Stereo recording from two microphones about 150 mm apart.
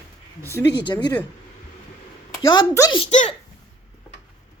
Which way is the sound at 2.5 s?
30° left (ahead or behind).